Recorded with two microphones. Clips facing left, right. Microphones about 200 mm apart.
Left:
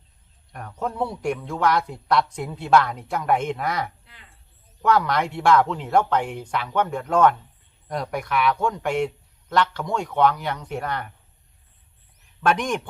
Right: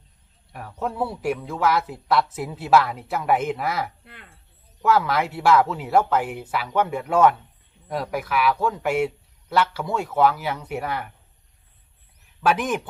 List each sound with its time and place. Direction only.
0.5 s a man's voice: 5° right (ahead or behind)
4.0 s speech: 60° right (ahead or behind)
4.8 s a man's voice: 5° right (ahead or behind)
12.4 s a man's voice: 5° right (ahead or behind)